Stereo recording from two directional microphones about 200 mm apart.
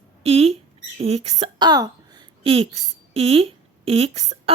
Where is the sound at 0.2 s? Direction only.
30° right (ahead or behind).